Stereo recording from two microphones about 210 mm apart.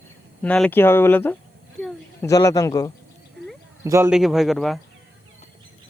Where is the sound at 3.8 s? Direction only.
15° right (ahead or behind).